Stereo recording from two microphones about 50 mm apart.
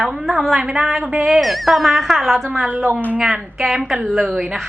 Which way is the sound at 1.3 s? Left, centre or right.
Centre.